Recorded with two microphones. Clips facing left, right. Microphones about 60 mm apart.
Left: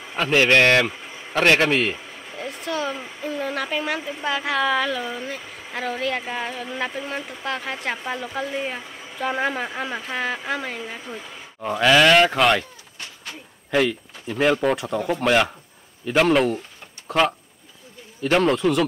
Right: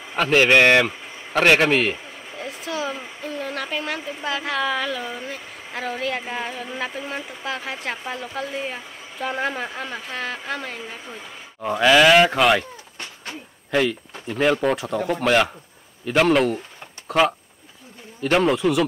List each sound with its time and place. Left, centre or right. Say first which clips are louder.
0.1 s a man's voice: right 1 dB; centre
13.7 s a man's voice: even; centre
18.2 s a man's voice: even; centre